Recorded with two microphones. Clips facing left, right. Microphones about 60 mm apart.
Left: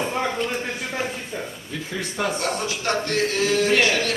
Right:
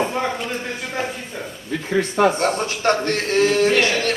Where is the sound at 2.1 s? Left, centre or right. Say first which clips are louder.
Right 6 dB; right.